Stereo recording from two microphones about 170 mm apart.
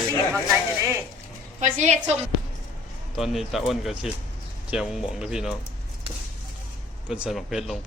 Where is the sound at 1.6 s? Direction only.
45° right (ahead or behind).